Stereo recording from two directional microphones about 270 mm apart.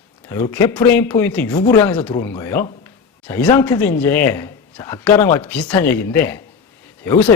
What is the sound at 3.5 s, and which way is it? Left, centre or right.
A man's voice, centre.